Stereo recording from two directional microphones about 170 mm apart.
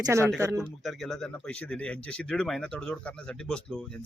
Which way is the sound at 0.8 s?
Centre (ahead or behind).